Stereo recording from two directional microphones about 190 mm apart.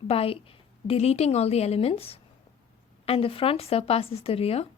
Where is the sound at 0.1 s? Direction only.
30° left (ahead or behind).